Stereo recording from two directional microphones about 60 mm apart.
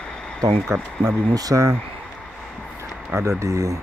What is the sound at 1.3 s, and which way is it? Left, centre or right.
Speech, right.